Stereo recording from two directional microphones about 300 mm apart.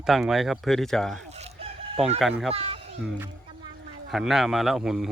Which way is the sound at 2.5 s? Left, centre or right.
Centre.